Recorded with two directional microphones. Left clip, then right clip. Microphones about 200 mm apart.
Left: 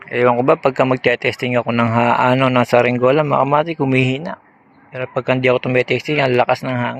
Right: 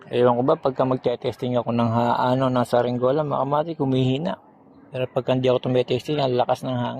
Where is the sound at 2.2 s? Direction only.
35° left (ahead or behind).